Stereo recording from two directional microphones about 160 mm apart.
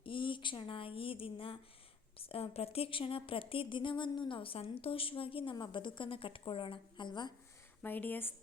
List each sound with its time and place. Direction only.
0.0 s a sound: 30° left (ahead or behind)
2.1 s speech: 35° left (ahead or behind)
7.8 s speech: 10° left (ahead or behind)